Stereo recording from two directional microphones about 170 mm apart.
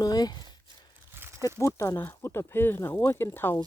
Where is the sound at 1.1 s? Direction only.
15° right (ahead or behind).